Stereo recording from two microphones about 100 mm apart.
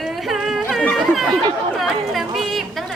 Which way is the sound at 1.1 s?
Centre (ahead or behind).